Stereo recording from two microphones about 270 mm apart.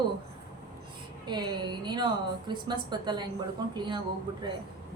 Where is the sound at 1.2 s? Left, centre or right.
Centre.